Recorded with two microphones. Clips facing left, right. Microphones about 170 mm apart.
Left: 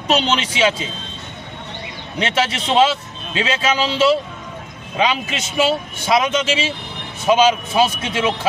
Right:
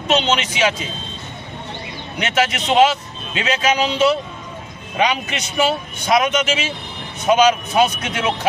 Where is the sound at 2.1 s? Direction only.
30° left (ahead or behind).